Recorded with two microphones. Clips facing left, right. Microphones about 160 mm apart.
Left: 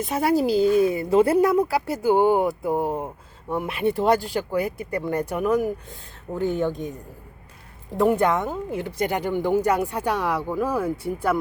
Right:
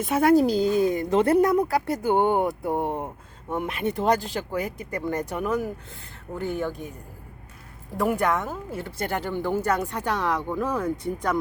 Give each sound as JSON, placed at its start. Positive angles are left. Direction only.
{"t": 0.0, "sound": "a woman's voice", "side_deg": 0}
{"t": 7.9, "sound": "speech", "side_deg": 20}